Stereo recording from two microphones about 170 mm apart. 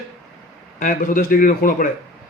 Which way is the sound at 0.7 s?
55° left (ahead or behind).